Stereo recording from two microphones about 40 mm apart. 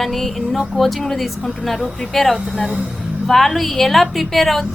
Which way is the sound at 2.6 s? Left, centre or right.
Right.